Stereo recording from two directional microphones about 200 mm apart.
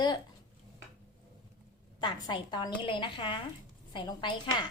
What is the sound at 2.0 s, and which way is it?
A woman's voice, 20° left (ahead or behind).